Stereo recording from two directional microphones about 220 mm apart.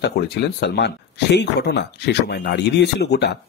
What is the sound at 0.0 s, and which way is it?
Speech, 50° left (ahead or behind).